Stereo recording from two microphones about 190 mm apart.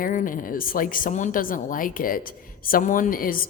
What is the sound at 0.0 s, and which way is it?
A man's voice, 45° left (ahead or behind).